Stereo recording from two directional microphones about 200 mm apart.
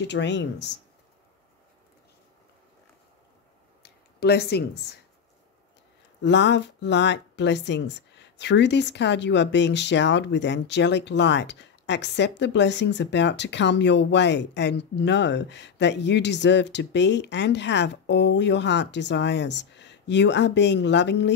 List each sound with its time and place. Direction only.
0.0 s speech: 60° left (ahead or behind)
3.8 s a sound: 55° left (ahead or behind)
6.2 s speech: 60° left (ahead or behind)